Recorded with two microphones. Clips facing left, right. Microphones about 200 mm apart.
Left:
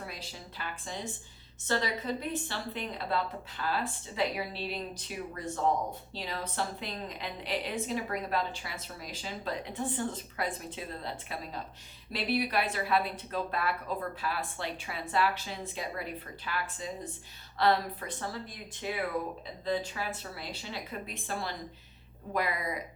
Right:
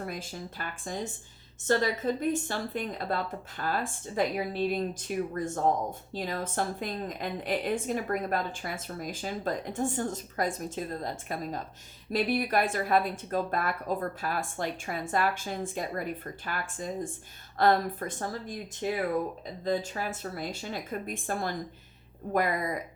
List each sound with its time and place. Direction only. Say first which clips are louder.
0.0 s a woman's voice: right 6 dB; 50° right (ahead or behind)